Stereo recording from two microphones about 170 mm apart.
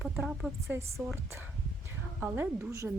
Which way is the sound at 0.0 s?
Centre (ahead or behind).